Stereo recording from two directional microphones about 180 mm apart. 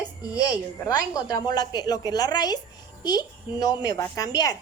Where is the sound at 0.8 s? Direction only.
20° left (ahead or behind).